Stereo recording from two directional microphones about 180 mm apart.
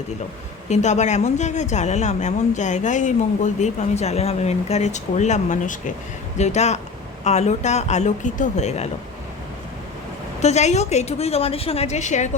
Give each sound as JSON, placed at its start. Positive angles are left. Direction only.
{"t": 0.7, "sound": "a woman's voice", "side_deg": 40}
{"t": 10.4, "sound": "a woman's voice", "side_deg": 40}